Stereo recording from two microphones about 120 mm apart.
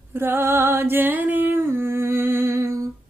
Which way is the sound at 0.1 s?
20° right (ahead or behind).